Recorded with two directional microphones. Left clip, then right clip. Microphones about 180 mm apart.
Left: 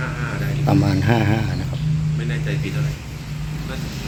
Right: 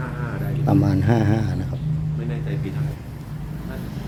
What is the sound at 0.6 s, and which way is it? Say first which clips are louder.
Speech: left 1 dB; 10° right (ahead or behind).